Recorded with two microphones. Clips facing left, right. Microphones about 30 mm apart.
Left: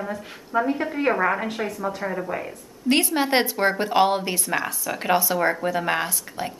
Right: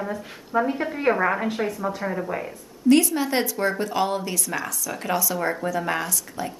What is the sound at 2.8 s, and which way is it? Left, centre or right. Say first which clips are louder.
Speech: right 2 dB; left.